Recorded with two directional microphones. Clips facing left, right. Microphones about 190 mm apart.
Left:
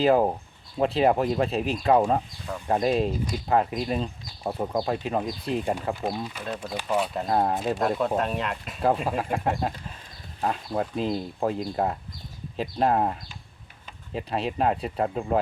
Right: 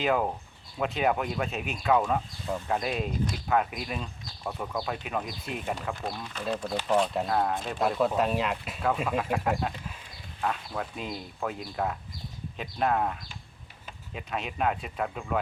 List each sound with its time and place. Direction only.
0.0 s speech: 35° left (ahead or behind)
5.9 s speech: 10° left (ahead or behind)
7.3 s speech: 30° left (ahead or behind)
7.8 s speech: centre (ahead or behind)
9.0 s speech: 35° left (ahead or behind)